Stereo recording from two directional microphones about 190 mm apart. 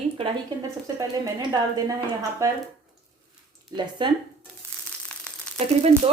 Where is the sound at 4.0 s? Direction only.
25° right (ahead or behind).